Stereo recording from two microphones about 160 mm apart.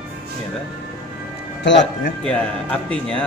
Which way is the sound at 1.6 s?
90° left.